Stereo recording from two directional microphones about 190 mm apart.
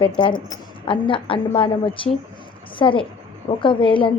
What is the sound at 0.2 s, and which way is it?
A woman's voice, 25° left (ahead or behind).